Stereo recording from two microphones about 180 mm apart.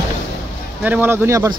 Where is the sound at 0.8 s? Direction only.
10° right (ahead or behind).